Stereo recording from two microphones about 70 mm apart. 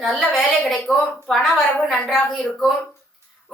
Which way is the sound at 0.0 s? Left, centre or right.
Centre.